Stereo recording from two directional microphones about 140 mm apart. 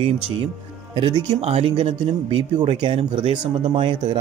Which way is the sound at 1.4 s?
45° right (ahead or behind).